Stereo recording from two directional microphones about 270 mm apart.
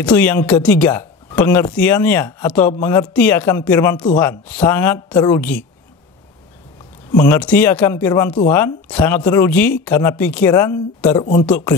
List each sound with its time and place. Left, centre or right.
0.0 s speech: centre
7.2 s speech: centre